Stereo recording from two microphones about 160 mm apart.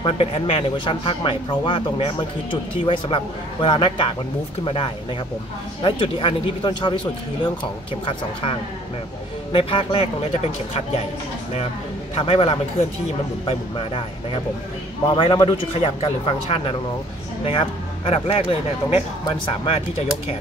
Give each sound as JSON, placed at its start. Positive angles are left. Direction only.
{"t": 0.0, "sound": "speech", "side_deg": 35}
{"t": 8.0, "sound": "speech", "side_deg": 30}
{"t": 12.2, "sound": "speech", "side_deg": 35}